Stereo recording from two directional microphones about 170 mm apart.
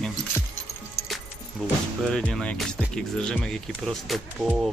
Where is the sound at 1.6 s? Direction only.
Centre (ahead or behind).